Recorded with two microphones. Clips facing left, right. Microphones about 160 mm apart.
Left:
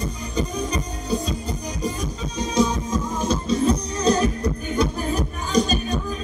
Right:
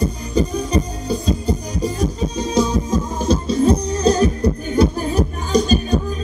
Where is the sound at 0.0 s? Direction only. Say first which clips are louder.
Right 7 dB; 30° right (ahead or behind).